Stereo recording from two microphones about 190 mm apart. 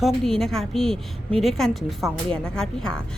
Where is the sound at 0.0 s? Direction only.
Centre (ahead or behind).